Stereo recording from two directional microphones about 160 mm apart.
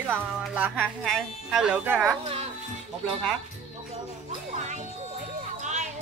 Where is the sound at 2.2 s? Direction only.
40° right (ahead or behind).